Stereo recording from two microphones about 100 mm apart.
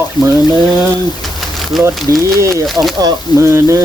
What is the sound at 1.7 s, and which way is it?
Speech, centre (ahead or behind).